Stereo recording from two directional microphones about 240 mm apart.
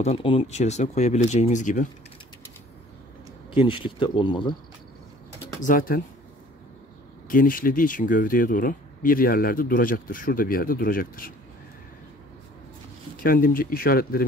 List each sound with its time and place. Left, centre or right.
0.0 s speech: left
3.5 s speech: left
5.6 s speech: left
7.2 s speech: left
13.2 s speech: left